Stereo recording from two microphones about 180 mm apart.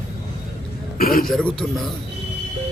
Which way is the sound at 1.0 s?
55° left (ahead or behind).